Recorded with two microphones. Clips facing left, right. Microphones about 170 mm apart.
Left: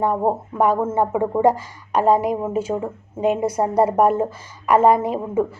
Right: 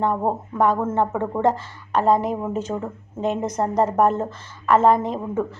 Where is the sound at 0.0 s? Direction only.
10° left (ahead or behind).